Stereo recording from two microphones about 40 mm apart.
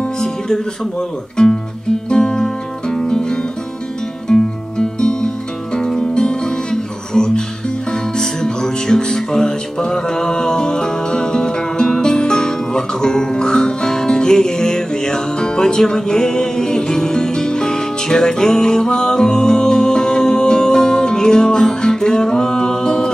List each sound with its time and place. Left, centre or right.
1.3 s speech: centre
2.0 s music: centre